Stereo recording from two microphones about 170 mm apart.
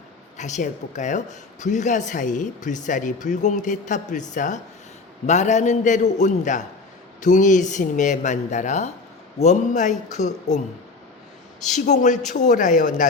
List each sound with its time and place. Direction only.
0.3 s speech: 45° left (ahead or behind)
11.6 s speech: 45° left (ahead or behind)